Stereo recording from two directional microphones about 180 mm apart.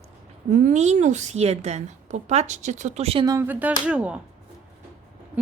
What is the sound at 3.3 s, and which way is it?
Speech, 15° right (ahead or behind).